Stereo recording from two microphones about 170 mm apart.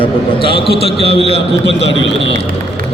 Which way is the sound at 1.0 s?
90° left.